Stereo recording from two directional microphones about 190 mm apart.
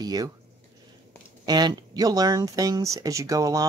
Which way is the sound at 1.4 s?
20° right (ahead or behind).